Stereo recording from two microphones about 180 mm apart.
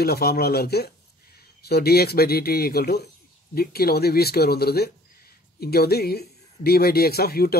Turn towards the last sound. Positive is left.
turn(degrees=60)  # may be behind; listen again after turning